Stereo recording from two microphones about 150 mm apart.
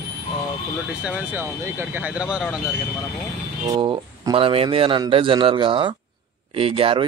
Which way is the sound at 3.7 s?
25° right (ahead or behind).